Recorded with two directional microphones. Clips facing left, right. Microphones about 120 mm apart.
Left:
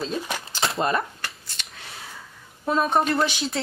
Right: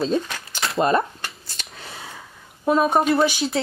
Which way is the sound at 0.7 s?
30° right (ahead or behind).